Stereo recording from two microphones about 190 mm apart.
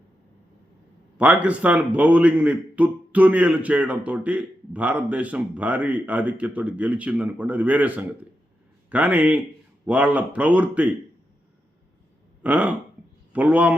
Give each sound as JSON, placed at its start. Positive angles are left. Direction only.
{"t": 1.2, "sound": "a man's voice", "side_deg": -5}
{"t": 12.4, "sound": "a man's voice", "side_deg": -5}